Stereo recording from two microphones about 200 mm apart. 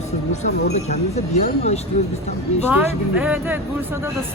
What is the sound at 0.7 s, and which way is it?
A woman's voice, 35° left (ahead or behind).